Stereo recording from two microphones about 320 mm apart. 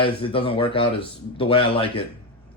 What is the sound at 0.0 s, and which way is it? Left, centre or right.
Speech, centre.